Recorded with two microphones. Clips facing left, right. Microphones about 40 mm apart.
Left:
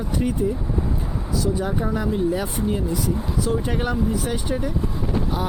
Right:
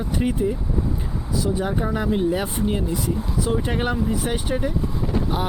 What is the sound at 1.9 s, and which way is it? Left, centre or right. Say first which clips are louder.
Speech: right 1 dB; right.